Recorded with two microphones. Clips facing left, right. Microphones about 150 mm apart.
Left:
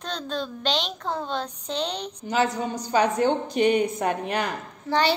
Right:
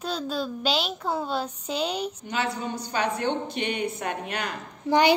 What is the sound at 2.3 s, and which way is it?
A woman's voice, 40° left (ahead or behind).